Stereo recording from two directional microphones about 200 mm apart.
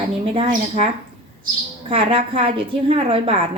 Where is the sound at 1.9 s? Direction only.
30° right (ahead or behind).